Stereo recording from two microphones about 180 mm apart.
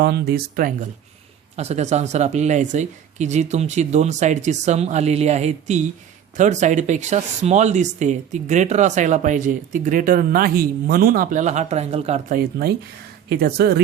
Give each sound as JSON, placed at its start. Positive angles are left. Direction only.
{"t": 0.0, "sound": "speech", "side_deg": -65}
{"t": 1.5, "sound": "speech", "side_deg": -40}
{"t": 12.4, "sound": "speech", "side_deg": -60}